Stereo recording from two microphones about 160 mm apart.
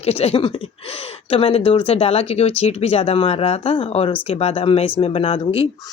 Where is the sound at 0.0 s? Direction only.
40° left (ahead or behind).